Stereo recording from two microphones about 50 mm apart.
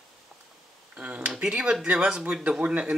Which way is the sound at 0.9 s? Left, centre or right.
Right.